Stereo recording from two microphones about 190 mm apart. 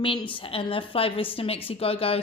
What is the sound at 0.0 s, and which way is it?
Speech, 30° left (ahead or behind).